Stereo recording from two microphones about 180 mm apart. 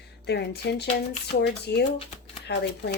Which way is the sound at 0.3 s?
70° left (ahead or behind).